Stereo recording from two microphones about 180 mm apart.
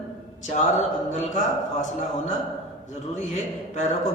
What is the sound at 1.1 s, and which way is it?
Speech, 40° left (ahead or behind).